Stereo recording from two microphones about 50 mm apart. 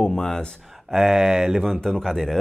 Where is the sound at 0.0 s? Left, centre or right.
Centre.